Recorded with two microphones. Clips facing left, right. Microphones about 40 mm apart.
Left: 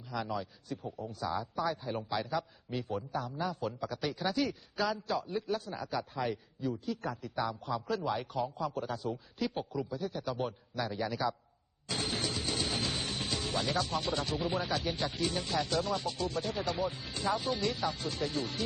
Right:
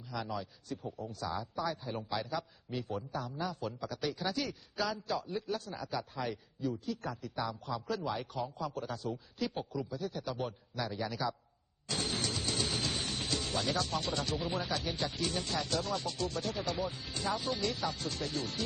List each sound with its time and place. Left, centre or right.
0.1 s a man's voice: centre